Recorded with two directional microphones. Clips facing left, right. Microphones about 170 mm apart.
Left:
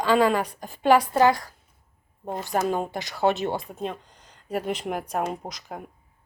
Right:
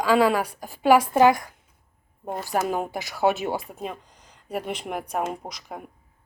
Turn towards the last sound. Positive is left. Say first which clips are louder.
# even
turn(degrees=0)  # may be behind; listen again after turning